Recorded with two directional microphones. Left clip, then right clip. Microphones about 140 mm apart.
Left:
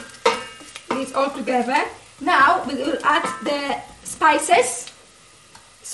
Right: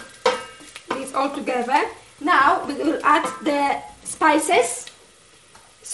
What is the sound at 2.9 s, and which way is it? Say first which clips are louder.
A woman's voice: right 1 dB; 40° right (ahead or behind).